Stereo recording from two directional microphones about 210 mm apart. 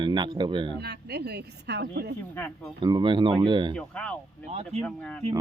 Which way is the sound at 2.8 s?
20° right (ahead or behind).